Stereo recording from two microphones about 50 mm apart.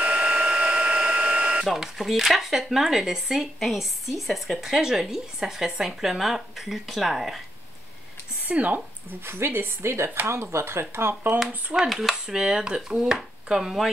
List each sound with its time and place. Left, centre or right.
0.0 s a sound: right
1.7 s a woman's voice: centre
8.5 s speech: right
9.2 s speech: right
11.3 s a woman's voice: centre
12.4 s speech: centre